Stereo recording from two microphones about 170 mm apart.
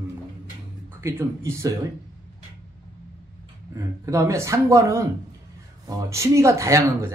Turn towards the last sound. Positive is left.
turn(degrees=-15)  # may be behind; listen again after turning